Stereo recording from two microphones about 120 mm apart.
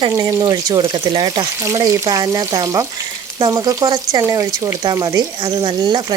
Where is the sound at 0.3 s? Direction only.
35° right (ahead or behind).